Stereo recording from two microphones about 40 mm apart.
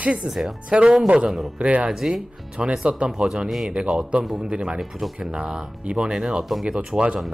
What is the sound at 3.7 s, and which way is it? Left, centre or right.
Speech, right.